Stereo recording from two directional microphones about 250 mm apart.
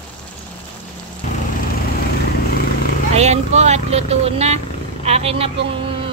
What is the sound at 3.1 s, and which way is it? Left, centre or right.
Speech, right.